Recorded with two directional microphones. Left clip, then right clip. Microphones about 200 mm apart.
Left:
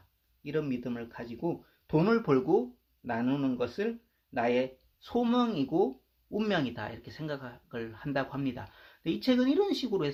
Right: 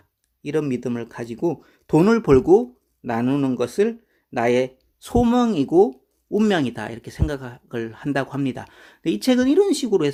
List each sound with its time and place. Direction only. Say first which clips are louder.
0.4 s speech: right 10 dB; 50° right (ahead or behind)